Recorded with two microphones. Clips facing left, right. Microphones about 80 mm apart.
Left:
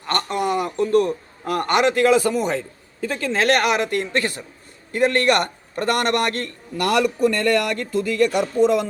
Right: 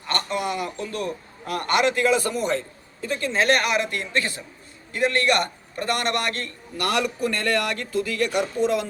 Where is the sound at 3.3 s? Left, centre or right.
Left.